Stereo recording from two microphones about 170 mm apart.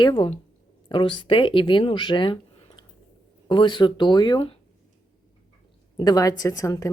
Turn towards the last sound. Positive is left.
turn(degrees=20)  # may be behind; listen again after turning